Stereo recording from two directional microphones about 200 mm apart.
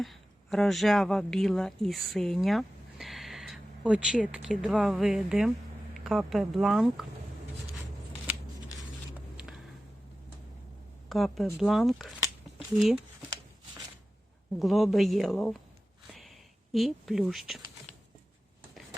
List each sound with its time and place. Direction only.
0.0 s speech: centre (ahead or behind)
11.1 s speech: centre (ahead or behind)
14.6 s speech: centre (ahead or behind)
16.0 s a sound: centre (ahead or behind)
16.7 s speech: centre (ahead or behind)